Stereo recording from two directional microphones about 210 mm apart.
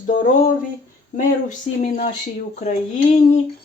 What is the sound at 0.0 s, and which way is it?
Speech, 40° left (ahead or behind).